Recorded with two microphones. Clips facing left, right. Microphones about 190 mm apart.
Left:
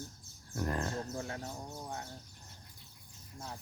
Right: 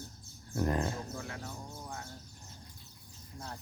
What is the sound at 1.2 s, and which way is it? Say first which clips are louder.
Music: left 2 dB; 30° left (ahead or behind).